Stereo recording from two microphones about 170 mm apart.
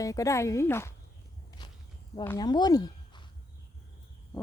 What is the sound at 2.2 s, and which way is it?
Speech, 20° left (ahead or behind).